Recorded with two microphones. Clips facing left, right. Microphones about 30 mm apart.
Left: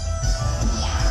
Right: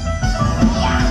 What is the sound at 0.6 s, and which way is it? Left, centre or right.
Music, right.